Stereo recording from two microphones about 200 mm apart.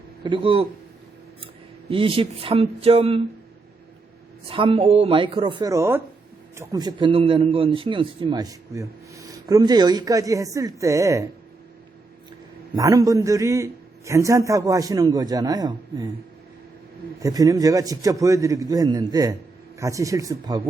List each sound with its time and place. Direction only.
0.2 s speech: 25° right (ahead or behind)
1.9 s speech: 25° right (ahead or behind)
4.4 s a man's voice: 25° right (ahead or behind)
12.7 s a man's voice: 15° right (ahead or behind)
17.2 s a man's voice: 15° right (ahead or behind)